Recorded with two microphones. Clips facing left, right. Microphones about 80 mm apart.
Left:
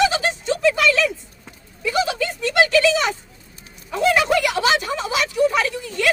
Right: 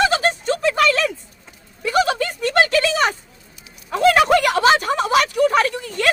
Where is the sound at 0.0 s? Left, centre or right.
Right.